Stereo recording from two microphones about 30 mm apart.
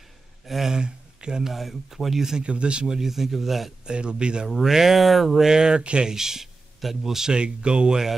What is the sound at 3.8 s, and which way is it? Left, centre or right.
Speech, right.